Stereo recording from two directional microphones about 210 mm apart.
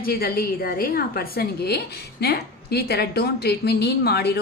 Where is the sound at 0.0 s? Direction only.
45° left (ahead or behind).